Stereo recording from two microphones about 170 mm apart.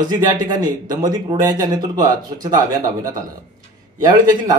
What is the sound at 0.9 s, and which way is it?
A man's voice, 25° right (ahead or behind).